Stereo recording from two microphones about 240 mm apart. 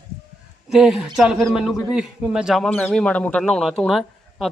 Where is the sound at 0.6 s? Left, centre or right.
Centre.